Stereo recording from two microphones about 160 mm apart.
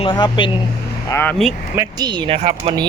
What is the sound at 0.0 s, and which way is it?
Speech, 30° left (ahead or behind).